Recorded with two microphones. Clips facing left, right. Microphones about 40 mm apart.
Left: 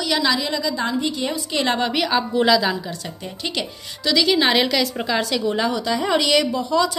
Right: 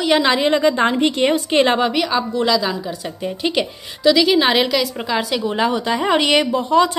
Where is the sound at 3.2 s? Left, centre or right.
Right.